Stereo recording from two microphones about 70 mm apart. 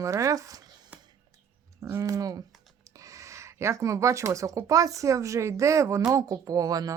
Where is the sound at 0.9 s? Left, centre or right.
Centre.